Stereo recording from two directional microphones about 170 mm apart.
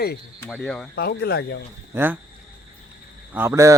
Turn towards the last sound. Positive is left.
turn(degrees=-15)  # may be behind; listen again after turning